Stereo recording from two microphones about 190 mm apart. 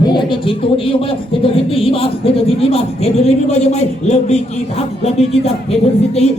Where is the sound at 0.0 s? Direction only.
25° left (ahead or behind).